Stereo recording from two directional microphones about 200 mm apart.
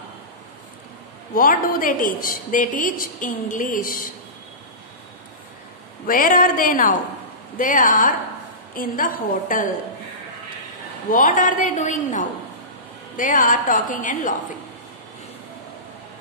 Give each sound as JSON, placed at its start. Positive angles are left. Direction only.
{"t": 1.3, "sound": "a woman's voice", "side_deg": 45}
{"t": 6.0, "sound": "a woman's voice", "side_deg": 45}
{"t": 11.1, "sound": "a woman's voice", "side_deg": 40}